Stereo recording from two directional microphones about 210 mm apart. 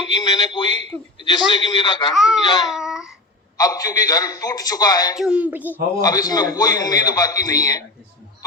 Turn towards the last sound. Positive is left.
turn(degrees=15)  # may be behind; listen again after turning